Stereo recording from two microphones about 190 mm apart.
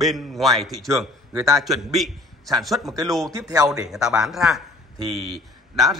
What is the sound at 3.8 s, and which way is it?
A man's voice, 5° right (ahead or behind).